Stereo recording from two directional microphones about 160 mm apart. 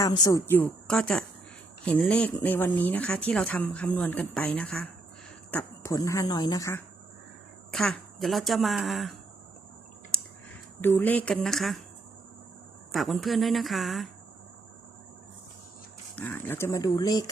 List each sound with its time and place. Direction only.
0.0 s speech: 25° left (ahead or behind)
7.7 s a woman's voice: centre (ahead or behind)
10.8 s speech: 15° left (ahead or behind)
12.9 s a woman's voice: centre (ahead or behind)
16.1 s speech: 10° left (ahead or behind)